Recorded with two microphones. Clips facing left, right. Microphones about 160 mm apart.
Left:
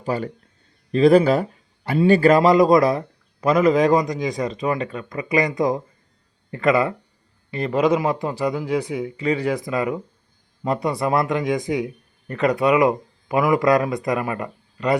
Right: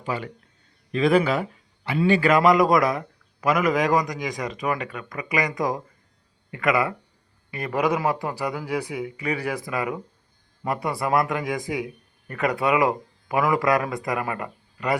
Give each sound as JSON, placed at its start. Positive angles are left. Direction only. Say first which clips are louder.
{"t": 0.0, "sound": "a man's voice", "louder": "left 5 dB", "side_deg": 40}